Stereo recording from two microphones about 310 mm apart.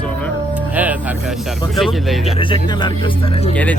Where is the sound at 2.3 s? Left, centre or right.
Centre.